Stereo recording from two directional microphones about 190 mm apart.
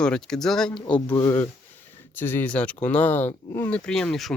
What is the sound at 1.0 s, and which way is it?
Speech, 20° left (ahead or behind).